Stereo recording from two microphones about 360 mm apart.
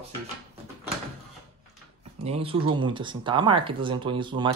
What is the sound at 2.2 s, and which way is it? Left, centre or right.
Speech, centre.